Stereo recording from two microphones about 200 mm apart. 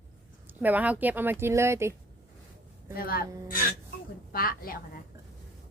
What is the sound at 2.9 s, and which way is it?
Speech, 50° left (ahead or behind).